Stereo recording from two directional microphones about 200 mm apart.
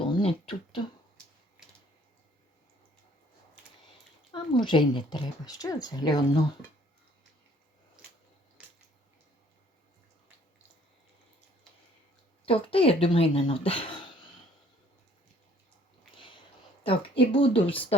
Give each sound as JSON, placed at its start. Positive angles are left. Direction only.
{"t": 0.0, "sound": "a sound", "side_deg": 30}
{"t": 4.3, "sound": "speech", "side_deg": 25}
{"t": 12.5, "sound": "speech", "side_deg": 25}
{"t": 16.8, "sound": "speech", "side_deg": 25}